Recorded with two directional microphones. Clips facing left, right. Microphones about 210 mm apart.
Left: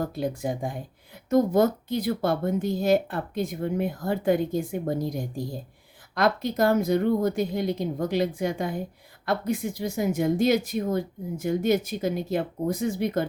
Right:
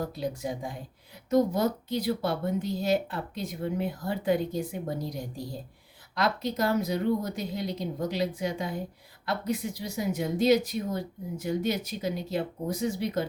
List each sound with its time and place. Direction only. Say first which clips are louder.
0.0 s speech: left 4 dB; 50° left (ahead or behind)